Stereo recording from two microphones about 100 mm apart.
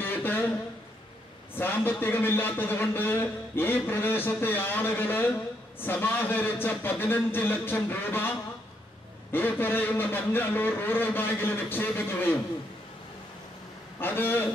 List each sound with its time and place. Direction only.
0.0 s a sound: 20° left (ahead or behind)
1.5 s a man's voice: 20° left (ahead or behind)
13.9 s a man's voice: 20° left (ahead or behind)